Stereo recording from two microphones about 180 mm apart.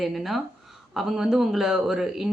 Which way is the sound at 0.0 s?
Centre (ahead or behind).